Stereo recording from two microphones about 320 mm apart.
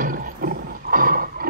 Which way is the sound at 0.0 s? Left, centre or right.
Right.